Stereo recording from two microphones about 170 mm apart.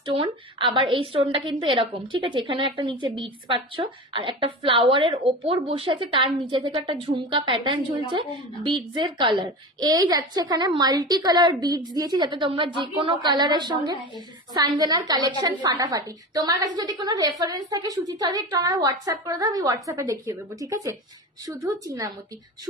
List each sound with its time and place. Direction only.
0.0 s a woman's voice: 30° right (ahead or behind)